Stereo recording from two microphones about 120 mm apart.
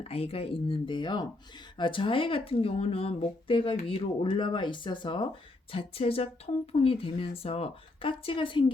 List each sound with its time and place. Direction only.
0.0 s speech: 60° left (ahead or behind); by 5.3 s 40° left (ahead or behind)
5.7 s speech: 50° left (ahead or behind)